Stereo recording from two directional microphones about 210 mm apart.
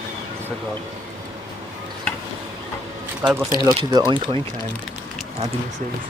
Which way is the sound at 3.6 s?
20° right (ahead or behind).